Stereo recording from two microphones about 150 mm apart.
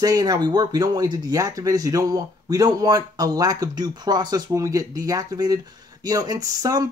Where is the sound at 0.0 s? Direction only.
25° right (ahead or behind).